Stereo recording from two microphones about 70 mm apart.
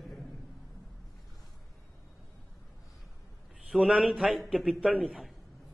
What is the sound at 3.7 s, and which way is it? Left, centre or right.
A man's voice, centre.